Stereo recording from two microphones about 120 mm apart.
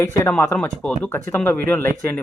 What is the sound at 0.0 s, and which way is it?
Speech, 20° left (ahead or behind).